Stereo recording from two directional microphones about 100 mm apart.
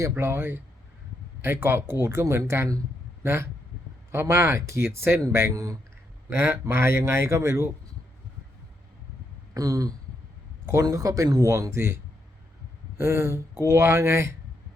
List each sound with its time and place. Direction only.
0.1 s speech: 25° right (ahead or behind)
9.6 s speech: 35° right (ahead or behind)
13.0 s speech: 25° right (ahead or behind)